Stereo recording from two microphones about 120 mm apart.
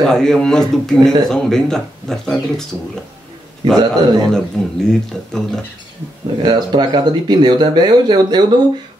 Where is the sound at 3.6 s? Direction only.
35° right (ahead or behind).